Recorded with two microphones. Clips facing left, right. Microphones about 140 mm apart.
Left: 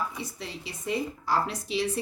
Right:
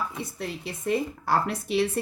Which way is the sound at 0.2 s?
55° right (ahead or behind).